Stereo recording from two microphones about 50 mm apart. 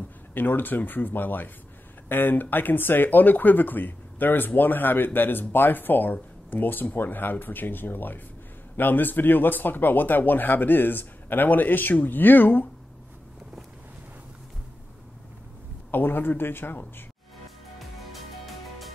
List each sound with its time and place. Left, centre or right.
0.3 s speech: left
15.9 s speech: left
17.7 s music: centre